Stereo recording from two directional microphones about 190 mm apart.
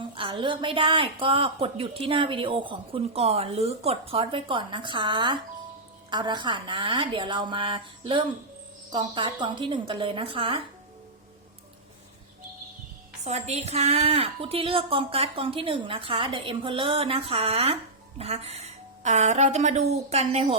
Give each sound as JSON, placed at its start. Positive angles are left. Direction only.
{"t": 0.0, "sound": "speech", "side_deg": -25}
{"t": 13.2, "sound": "a woman's voice", "side_deg": -35}